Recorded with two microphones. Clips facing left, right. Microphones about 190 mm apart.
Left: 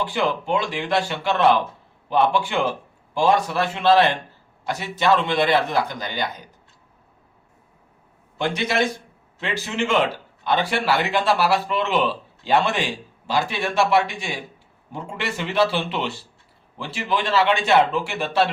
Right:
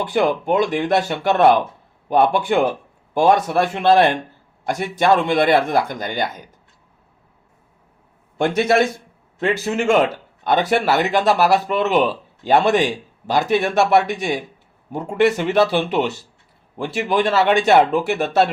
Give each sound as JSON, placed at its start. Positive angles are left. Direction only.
{"t": 0.0, "sound": "speech", "side_deg": -50}
{"t": 8.4, "sound": "speech", "side_deg": -50}